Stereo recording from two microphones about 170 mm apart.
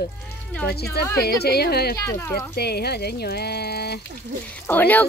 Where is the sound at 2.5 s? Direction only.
70° left (ahead or behind).